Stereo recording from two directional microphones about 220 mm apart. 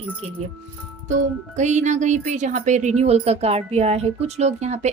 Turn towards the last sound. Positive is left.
turn(degrees=-30)  # may be behind; listen again after turning